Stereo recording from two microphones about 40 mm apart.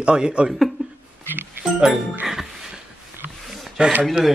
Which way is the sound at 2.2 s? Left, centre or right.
Centre.